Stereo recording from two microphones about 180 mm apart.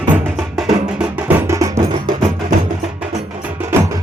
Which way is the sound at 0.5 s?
5° right (ahead or behind).